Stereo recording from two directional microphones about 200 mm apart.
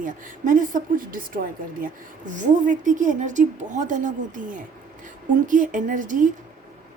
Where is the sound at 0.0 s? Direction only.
40° right (ahead or behind).